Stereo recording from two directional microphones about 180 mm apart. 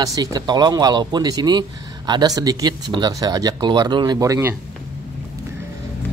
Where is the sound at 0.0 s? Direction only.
20° right (ahead or behind).